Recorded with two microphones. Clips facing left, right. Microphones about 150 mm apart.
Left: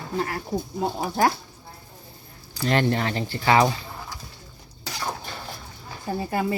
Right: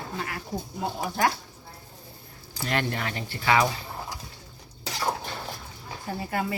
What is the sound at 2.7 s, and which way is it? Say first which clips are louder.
Speech: left 6 dB; 30° left (ahead or behind).